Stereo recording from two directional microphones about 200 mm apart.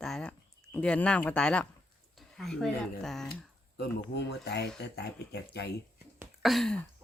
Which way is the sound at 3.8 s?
55° left (ahead or behind).